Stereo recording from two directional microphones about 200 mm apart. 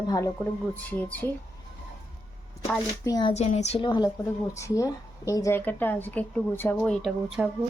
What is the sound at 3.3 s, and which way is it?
A woman's voice, 35° left (ahead or behind).